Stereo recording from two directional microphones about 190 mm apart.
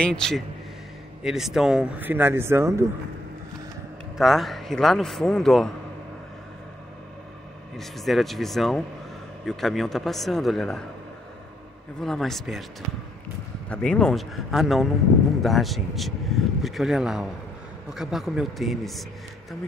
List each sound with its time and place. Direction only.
0.0 s speech: 5° left (ahead or behind); by 2.8 s 15° right (ahead or behind)
4.2 s speech: centre (ahead or behind)
7.7 s speech: centre (ahead or behind)
12.0 s speech: centre (ahead or behind)
13.7 s speech: 5° left (ahead or behind)